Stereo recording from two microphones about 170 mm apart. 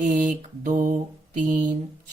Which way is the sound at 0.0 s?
50° right (ahead or behind).